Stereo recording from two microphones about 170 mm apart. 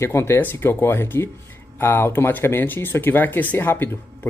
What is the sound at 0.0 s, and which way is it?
Speech, 15° left (ahead or behind).